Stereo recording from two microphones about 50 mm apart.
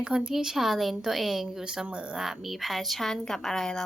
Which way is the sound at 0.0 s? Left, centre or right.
Centre.